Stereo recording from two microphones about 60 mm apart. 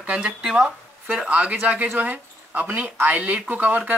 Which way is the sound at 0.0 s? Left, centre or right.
Centre.